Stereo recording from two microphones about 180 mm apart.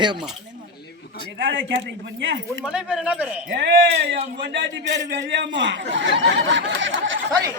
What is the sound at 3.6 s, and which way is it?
A man's voice, 70° right (ahead or behind).